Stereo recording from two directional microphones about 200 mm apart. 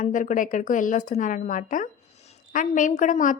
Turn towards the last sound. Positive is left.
turn(degrees=40)  # may be behind; listen again after turning